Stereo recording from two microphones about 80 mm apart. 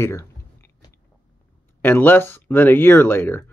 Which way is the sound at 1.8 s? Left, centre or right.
Left.